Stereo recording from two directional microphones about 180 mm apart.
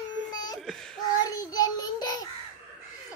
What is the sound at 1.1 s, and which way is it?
Child singing, 20° left (ahead or behind).